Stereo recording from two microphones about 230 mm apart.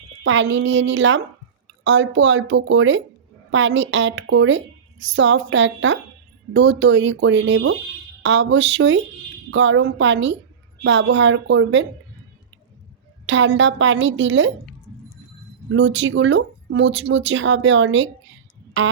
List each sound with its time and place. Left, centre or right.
0.2 s a woman's voice: right
13.2 s a woman's voice: right
15.7 s a woman's voice: right